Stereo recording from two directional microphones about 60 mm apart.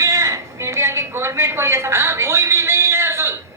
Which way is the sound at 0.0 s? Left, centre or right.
Right.